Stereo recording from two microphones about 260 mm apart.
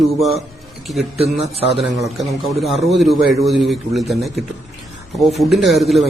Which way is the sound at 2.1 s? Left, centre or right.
Centre.